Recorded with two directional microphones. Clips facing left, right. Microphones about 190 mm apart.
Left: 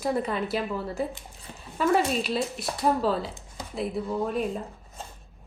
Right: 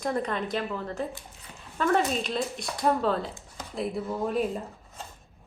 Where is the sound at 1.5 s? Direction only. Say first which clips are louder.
Left 5 dB; 35° left (ahead or behind).